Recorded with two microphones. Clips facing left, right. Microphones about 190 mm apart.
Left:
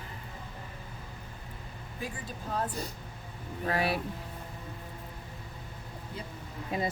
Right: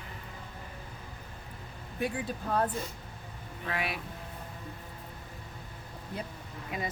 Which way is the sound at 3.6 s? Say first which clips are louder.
Left 5 dB; 35° left (ahead or behind).